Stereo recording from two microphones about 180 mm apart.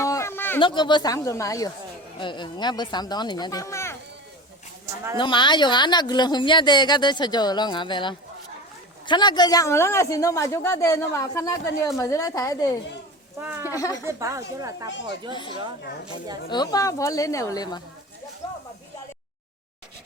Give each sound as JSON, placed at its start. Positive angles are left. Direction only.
{"t": 0.0, "sound": "a sound", "side_deg": 15}
{"t": 0.6, "sound": "speech", "side_deg": 25}
{"t": 5.1, "sound": "speech", "side_deg": 25}
{"t": 13.4, "sound": "speech", "side_deg": -10}
{"t": 13.7, "sound": "speech", "side_deg": 20}
{"t": 14.0, "sound": "speech", "side_deg": -15}
{"t": 15.3, "sound": "speech", "side_deg": 25}